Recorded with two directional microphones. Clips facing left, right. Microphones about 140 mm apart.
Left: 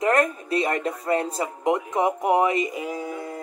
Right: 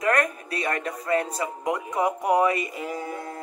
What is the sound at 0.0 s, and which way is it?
Speech, 25° left (ahead or behind).